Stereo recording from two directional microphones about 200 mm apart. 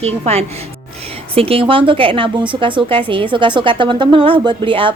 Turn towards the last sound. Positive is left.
turn(degrees=-25)  # may be behind; listen again after turning